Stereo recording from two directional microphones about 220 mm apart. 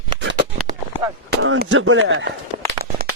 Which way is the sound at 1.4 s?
55° right (ahead or behind).